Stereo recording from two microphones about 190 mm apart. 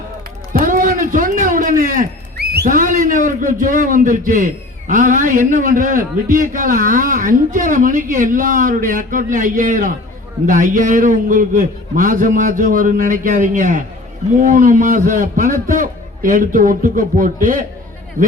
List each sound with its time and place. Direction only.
0.5 s a man's voice: 45° right (ahead or behind)